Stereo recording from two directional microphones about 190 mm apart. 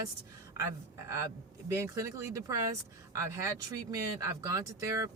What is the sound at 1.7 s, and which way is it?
A woman's voice, 15° right (ahead or behind).